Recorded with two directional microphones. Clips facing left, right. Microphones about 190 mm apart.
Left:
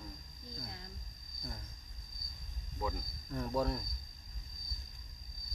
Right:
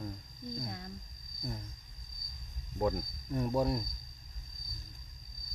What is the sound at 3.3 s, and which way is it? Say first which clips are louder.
Speech: right 4 dB; 15° right (ahead or behind).